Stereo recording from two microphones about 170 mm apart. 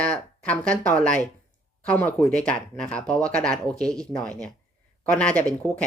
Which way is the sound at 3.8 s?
20° right (ahead or behind).